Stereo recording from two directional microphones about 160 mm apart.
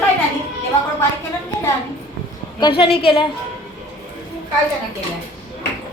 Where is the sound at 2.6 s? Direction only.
30° left (ahead or behind).